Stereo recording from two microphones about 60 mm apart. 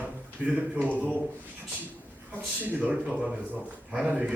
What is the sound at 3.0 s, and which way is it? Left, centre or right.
Speech, centre.